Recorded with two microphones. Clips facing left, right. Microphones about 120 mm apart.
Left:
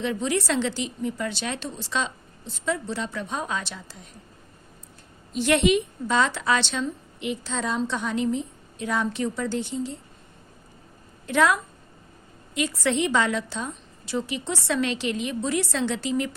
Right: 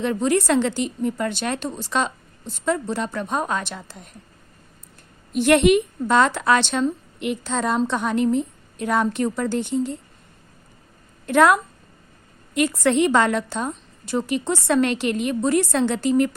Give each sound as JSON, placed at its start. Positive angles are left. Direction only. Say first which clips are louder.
{"t": 0.0, "sound": "a woman's voice", "louder": "right 5 dB", "side_deg": -50}
{"t": 5.3, "sound": "a woman's voice", "louder": "right 5 dB", "side_deg": -55}
{"t": 11.3, "sound": "a woman's voice", "louder": "right 5 dB", "side_deg": -55}